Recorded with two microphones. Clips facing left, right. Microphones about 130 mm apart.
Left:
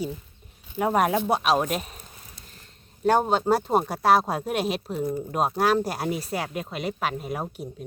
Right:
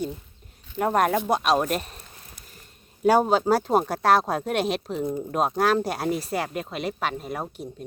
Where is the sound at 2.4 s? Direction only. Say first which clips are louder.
Left 1 dB; 30° left (ahead or behind).